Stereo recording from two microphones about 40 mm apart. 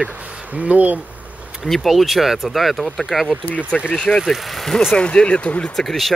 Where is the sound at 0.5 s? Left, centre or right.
Right.